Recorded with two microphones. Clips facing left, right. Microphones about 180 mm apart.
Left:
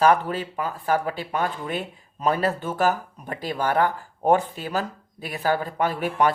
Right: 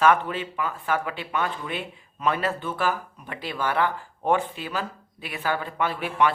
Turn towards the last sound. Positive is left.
turn(degrees=40)  # may be behind; listen again after turning